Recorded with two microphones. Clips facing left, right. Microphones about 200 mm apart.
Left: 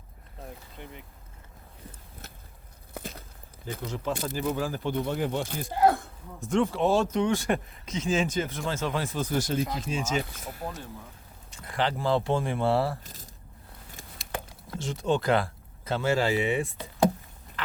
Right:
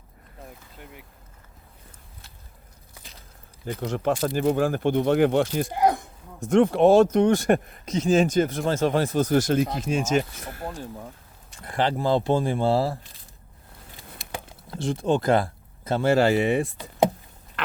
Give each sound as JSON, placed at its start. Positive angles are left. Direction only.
{"t": 2.9, "sound": "biting", "side_deg": 50}
{"t": 3.7, "sound": "speech", "side_deg": -65}
{"t": 4.1, "sound": "speech", "side_deg": -50}
{"t": 5.7, "sound": "speech", "side_deg": -15}
{"t": 6.5, "sound": "speech", "side_deg": -55}
{"t": 7.1, "sound": "speech", "side_deg": -50}
{"t": 9.2, "sound": "speech", "side_deg": -75}
{"t": 11.6, "sound": "speech", "side_deg": -45}
{"t": 13.0, "sound": "a sound", "side_deg": 45}
{"t": 14.8, "sound": "speech", "side_deg": -55}
{"t": 16.3, "sound": "speech", "side_deg": -40}